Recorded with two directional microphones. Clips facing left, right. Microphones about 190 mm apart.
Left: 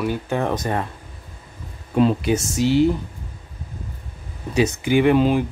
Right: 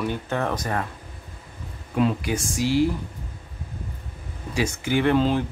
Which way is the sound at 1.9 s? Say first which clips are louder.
Left 5 dB; 30° left (ahead or behind).